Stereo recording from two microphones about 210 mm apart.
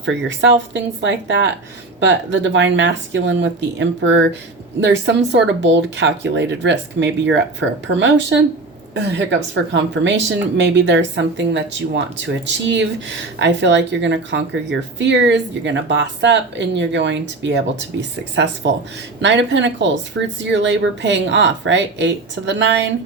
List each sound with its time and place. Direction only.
0.0 s speech: 60° right (ahead or behind)
9.7 s speech: 60° right (ahead or behind)